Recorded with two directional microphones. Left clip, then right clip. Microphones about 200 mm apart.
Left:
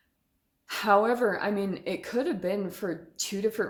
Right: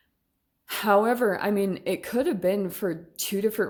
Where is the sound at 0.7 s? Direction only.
35° right (ahead or behind).